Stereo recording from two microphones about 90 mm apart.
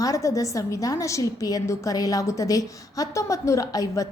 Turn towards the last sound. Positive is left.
turn(degrees=40)  # may be behind; listen again after turning